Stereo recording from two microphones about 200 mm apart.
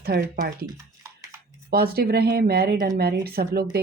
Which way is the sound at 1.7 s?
50° right (ahead or behind).